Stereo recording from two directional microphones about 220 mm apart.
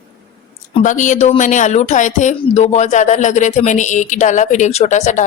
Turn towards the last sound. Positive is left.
turn(degrees=35)  # may be behind; listen again after turning